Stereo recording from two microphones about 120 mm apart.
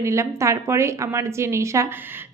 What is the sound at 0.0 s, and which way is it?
A woman's voice, 25° right (ahead or behind).